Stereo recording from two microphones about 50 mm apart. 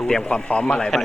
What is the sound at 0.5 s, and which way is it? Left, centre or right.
Speech, left.